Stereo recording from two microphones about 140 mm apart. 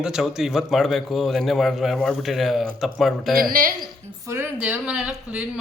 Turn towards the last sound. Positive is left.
turn(degrees=-5)  # may be behind; listen again after turning